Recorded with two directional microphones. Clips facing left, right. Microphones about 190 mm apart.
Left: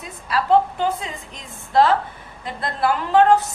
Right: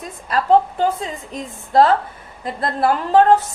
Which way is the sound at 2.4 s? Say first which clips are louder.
Right 3 dB; 45° right (ahead or behind).